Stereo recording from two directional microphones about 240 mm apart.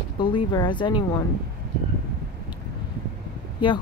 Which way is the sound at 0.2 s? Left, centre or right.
Centre.